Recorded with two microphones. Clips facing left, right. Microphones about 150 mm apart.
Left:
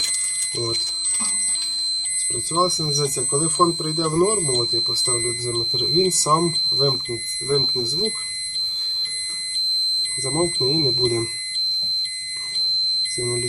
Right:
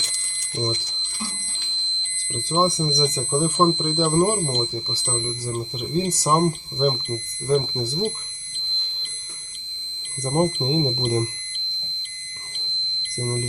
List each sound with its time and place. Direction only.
0.6 s speech: 20° right (ahead or behind)
2.5 s speech: 20° right (ahead or behind)
10.0 s speech: 15° right (ahead or behind)
12.5 s smoke detector: 15° right (ahead or behind)